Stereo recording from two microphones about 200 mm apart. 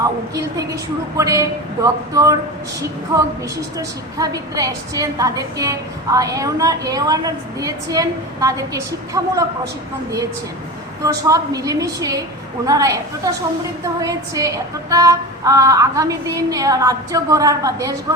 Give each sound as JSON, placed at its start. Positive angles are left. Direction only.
{"t": 0.0, "sound": "a woman's voice", "side_deg": -15}
{"t": 11.0, "sound": "a woman's voice", "side_deg": -15}